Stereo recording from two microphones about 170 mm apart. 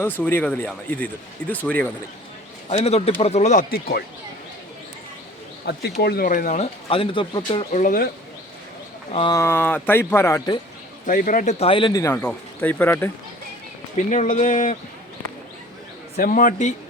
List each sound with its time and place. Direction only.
0.0 s speech: 10° left (ahead or behind)
2.6 s speech: 35° left (ahead or behind)
3.7 s speech: 65° left (ahead or behind)
5.7 s speech: 70° left (ahead or behind); by 7.7 s 30° left (ahead or behind)
7.7 s speech: 50° left (ahead or behind)
9.1 s speech: 30° left (ahead or behind)
9.4 s speech: 10° left (ahead or behind)
11.0 s speech: 55° left (ahead or behind)
11.6 s speech: 30° left (ahead or behind); by 13.1 s 10° left (ahead or behind)
13.9 s speech: 45° left (ahead or behind)
16.1 s speech: 55° left (ahead or behind)